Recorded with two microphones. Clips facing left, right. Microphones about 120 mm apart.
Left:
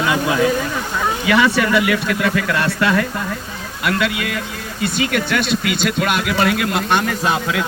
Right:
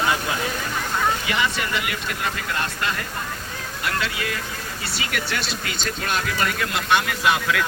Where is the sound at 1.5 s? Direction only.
90° left.